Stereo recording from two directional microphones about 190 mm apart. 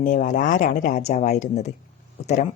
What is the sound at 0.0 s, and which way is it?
Speech, 40° left (ahead or behind).